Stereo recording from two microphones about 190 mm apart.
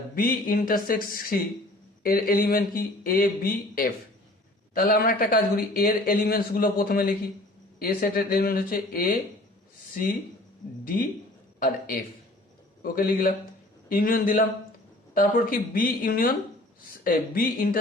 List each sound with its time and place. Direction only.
0.2 s speech: 50° left (ahead or behind)
12.8 s speech: 50° left (ahead or behind)